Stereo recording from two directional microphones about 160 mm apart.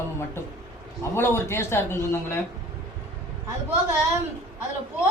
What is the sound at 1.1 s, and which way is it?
A man's voice, 15° left (ahead or behind).